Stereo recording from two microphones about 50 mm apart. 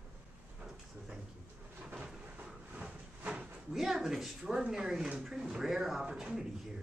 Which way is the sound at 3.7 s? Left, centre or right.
Centre.